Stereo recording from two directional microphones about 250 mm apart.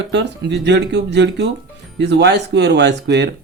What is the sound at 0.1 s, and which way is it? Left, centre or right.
Speech, right.